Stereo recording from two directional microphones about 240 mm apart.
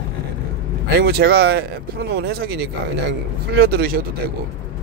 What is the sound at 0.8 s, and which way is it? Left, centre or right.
A man's voice, right.